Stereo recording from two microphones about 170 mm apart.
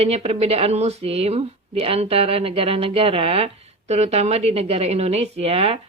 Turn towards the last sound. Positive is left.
turn(degrees=-35)  # may be behind; listen again after turning